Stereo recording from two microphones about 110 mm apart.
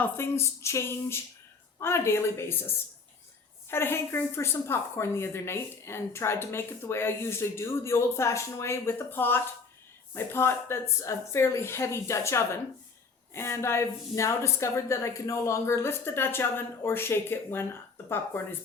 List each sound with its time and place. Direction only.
0.0 s a woman's voice: 25° left (ahead or behind)